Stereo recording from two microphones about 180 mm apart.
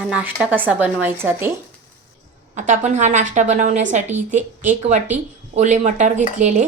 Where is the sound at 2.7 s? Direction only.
40° right (ahead or behind).